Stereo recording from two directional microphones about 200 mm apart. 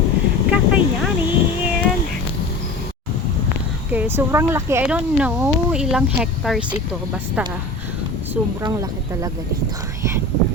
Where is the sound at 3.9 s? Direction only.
10° right (ahead or behind).